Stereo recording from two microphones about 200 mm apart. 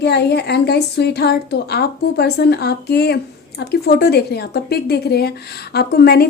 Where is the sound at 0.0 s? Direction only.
55° left (ahead or behind).